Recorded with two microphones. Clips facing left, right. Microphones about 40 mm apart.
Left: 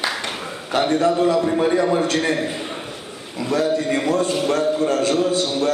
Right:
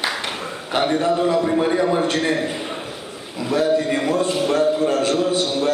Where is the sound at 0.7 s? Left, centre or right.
Right.